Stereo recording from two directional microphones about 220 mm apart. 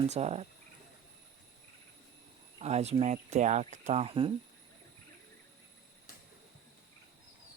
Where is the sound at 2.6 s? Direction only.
30° right (ahead or behind).